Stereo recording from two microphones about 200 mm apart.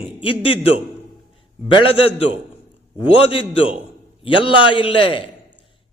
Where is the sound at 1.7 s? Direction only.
30° left (ahead or behind).